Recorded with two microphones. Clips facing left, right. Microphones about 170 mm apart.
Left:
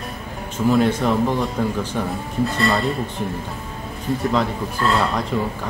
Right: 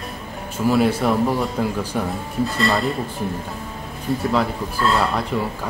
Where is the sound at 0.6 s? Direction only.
5° right (ahead or behind).